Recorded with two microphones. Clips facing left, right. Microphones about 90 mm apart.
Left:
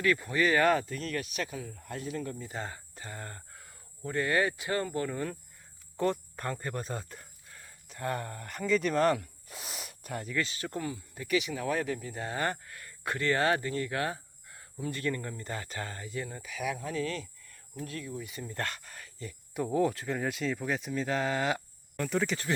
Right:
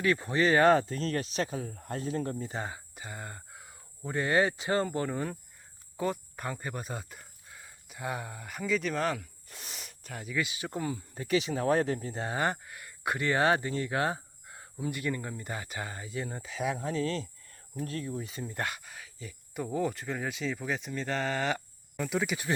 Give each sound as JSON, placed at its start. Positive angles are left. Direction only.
{"t": 0.0, "sound": "speech", "side_deg": -25}
{"t": 2.5, "sound": "speech", "side_deg": -15}
{"t": 6.0, "sound": "speech", "side_deg": -5}
{"t": 10.8, "sound": "speech", "side_deg": -30}